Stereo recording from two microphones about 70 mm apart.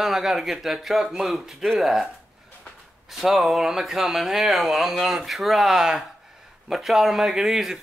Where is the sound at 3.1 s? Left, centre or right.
Centre.